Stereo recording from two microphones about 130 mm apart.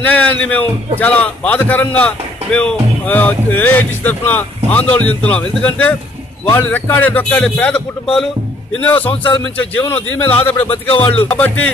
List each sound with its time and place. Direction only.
0.0 s speech: 10° left (ahead or behind)
9.1 s a man's voice: 40° left (ahead or behind)
9.4 s speech: 10° left (ahead or behind)
10.7 s speech: 45° left (ahead or behind)
11.2 s speech: 10° left (ahead or behind)